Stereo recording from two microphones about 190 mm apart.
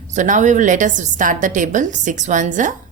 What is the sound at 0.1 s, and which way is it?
A woman's voice, 40° right (ahead or behind).